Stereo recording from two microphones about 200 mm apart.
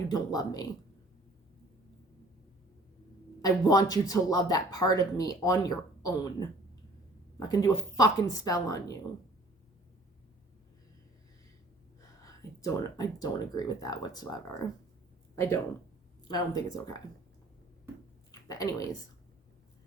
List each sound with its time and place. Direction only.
0.1 s speech: 20° left (ahead or behind)
3.4 s speech: 20° left (ahead or behind)
12.2 s speech: 15° left (ahead or behind)
18.3 s a sound: 20° left (ahead or behind)